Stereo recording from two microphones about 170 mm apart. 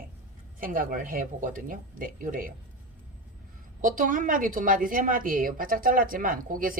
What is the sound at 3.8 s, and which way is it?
A woman's voice, 55° right (ahead or behind).